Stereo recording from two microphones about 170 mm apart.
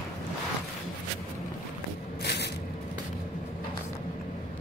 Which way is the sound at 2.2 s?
75° left (ahead or behind).